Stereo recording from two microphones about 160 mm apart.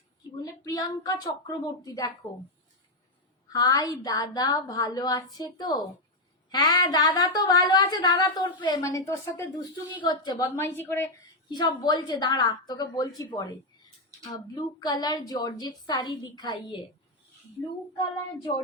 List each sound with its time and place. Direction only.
0.6 s a woman's voice: 25° left (ahead or behind)
3.5 s a woman's voice: 25° left (ahead or behind)
10.5 s a woman's voice: 15° left (ahead or behind)
11.4 s a woman's voice: 25° left (ahead or behind)